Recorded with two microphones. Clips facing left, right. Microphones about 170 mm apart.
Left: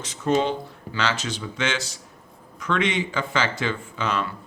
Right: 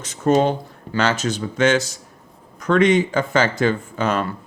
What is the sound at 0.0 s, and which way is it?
Speech, 45° right (ahead or behind).